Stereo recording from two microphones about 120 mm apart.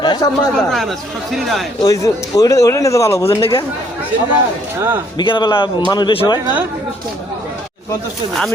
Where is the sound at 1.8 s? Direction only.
30° left (ahead or behind).